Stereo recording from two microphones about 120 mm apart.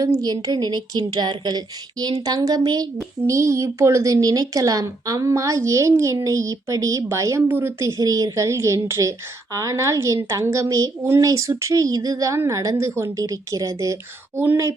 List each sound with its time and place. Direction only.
0.0 s speech: 30° right (ahead or behind)